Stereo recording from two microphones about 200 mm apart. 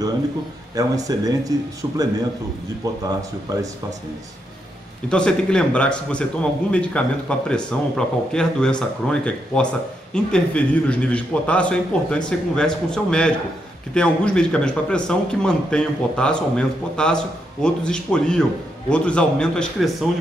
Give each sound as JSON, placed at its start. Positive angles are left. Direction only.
{"t": 0.7, "sound": "speech", "side_deg": -20}
{"t": 5.1, "sound": "a man's voice", "side_deg": 5}